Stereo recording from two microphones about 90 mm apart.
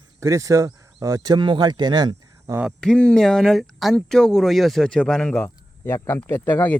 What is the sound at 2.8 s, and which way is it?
Speech, 10° left (ahead or behind).